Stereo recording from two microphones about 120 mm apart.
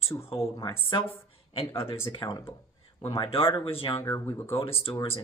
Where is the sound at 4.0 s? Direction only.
25° left (ahead or behind).